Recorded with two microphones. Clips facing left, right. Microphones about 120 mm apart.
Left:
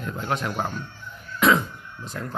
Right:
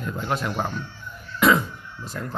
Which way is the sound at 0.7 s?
45° left (ahead or behind).